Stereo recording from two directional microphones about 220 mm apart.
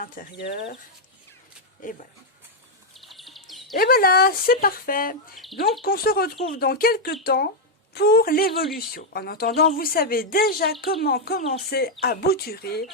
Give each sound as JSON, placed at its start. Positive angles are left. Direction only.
{"t": 0.0, "sound": "speech", "side_deg": 45}
{"t": 1.8, "sound": "speech", "side_deg": 40}
{"t": 2.9, "sound": "bird vocalization", "side_deg": 0}
{"t": 3.8, "sound": "speech", "side_deg": 40}